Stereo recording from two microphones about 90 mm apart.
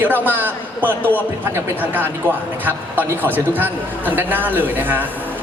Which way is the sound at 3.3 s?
20° right (ahead or behind).